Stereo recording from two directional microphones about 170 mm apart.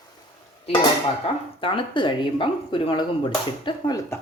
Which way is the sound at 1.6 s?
30° left (ahead or behind).